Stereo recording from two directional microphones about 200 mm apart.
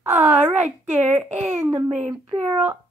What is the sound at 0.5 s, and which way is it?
Child singing, 35° right (ahead or behind).